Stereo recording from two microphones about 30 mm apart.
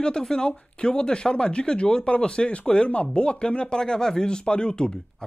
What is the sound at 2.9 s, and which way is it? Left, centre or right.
Speech, left.